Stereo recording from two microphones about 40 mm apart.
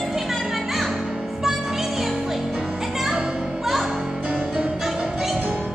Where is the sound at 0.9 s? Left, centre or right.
Centre.